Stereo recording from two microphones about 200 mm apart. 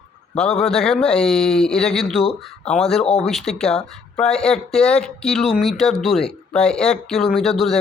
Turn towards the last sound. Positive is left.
turn(degrees=0)  # may be behind; listen again after turning